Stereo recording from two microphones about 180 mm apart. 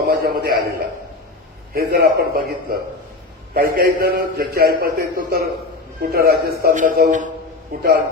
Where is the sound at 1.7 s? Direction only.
55° right (ahead or behind).